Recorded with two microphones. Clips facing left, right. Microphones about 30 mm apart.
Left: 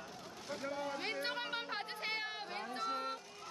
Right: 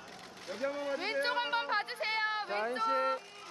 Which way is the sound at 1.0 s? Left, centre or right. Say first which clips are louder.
Right 7 dB; right.